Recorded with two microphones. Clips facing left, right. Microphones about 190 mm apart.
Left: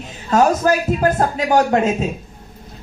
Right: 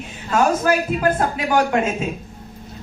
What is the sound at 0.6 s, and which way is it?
Speech, 40° left (ahead or behind).